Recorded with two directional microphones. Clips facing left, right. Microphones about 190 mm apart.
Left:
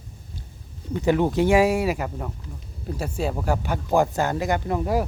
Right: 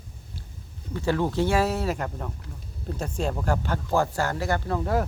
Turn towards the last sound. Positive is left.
turn(degrees=15)  # may be behind; listen again after turning